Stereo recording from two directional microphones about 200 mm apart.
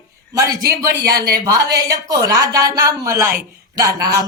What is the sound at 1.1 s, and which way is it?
Speech, 50° right (ahead or behind).